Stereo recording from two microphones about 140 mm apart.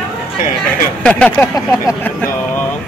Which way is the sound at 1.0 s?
10° left (ahead or behind).